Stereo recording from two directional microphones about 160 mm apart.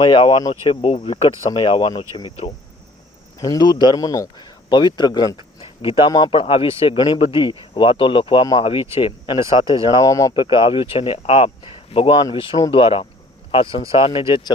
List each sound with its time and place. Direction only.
0.0 s a man's voice: 30° left (ahead or behind)
5.5 s a sound: 35° left (ahead or behind)
6.1 s a man's voice: 25° left (ahead or behind)